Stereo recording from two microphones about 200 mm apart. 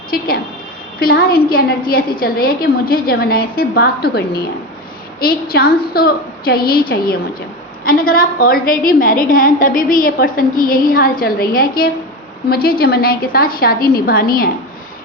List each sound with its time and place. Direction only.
0.1 s a woman's voice: 50° left (ahead or behind)